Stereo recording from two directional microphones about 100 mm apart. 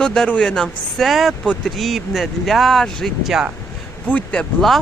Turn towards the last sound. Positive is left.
turn(degrees=5)  # may be behind; listen again after turning